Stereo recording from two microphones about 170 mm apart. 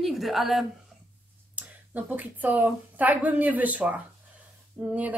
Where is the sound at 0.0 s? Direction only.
Centre (ahead or behind).